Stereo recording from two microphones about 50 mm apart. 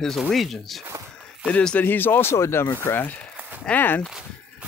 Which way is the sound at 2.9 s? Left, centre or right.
Left.